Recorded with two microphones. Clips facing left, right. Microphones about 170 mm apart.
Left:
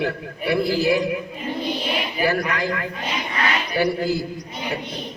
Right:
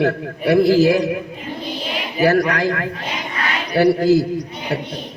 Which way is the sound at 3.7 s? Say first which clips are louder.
Right 10 dB; 90° right.